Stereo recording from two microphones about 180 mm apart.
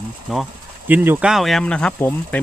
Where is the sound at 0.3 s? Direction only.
5° right (ahead or behind).